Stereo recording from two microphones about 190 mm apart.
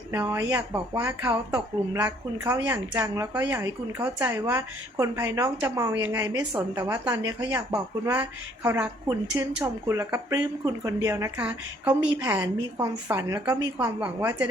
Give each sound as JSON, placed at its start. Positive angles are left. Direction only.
{"t": 0.1, "sound": "speech", "side_deg": -10}